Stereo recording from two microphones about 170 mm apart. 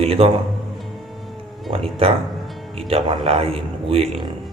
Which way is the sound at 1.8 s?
35° right (ahead or behind).